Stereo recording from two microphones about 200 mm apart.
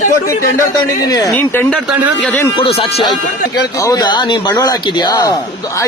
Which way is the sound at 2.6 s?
30° left (ahead or behind).